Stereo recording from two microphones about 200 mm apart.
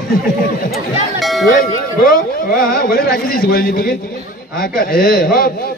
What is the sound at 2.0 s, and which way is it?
A man's voice, 45° left (ahead or behind).